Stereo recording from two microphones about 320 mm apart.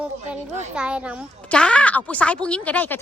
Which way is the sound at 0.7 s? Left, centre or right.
Centre.